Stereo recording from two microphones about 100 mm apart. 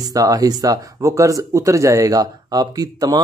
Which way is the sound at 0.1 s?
35° right (ahead or behind).